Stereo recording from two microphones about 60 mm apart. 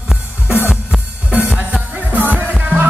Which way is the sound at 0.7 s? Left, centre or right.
Centre.